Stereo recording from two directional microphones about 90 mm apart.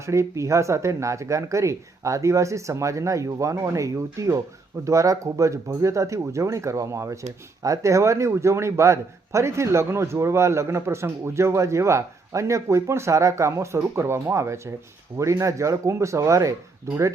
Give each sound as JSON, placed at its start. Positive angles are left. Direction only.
{"t": 0.0, "sound": "speech", "side_deg": -35}